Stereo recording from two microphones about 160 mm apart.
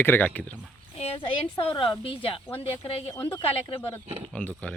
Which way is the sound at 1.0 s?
35° left (ahead or behind).